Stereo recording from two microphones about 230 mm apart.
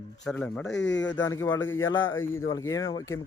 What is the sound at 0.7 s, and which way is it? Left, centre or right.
Speech, left.